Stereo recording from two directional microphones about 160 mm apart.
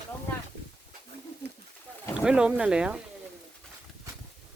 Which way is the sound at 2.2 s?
5° right (ahead or behind).